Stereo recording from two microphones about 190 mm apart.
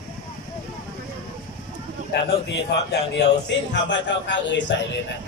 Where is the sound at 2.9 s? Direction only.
65° left (ahead or behind).